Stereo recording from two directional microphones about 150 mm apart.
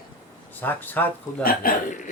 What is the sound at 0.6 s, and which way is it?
Speech, 10° left (ahead or behind).